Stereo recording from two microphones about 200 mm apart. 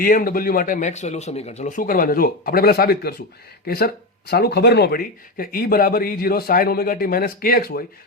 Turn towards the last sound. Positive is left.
turn(degrees=50)  # may be behind; listen again after turning